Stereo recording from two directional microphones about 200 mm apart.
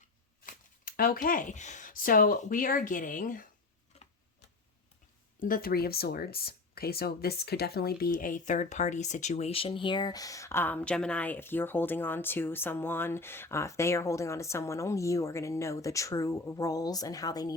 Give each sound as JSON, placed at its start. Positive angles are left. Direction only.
{"t": 0.4, "sound": "speech", "side_deg": 45}
{"t": 5.4, "sound": "speech", "side_deg": 45}